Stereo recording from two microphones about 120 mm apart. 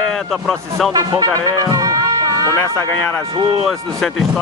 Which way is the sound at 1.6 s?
30° right (ahead or behind).